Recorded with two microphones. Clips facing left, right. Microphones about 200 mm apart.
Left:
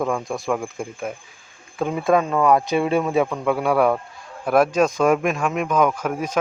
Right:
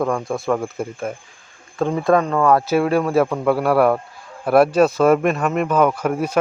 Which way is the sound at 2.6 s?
5° right (ahead or behind).